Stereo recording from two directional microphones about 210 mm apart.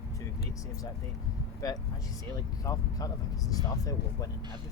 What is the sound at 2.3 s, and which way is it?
Speech, 15° left (ahead or behind).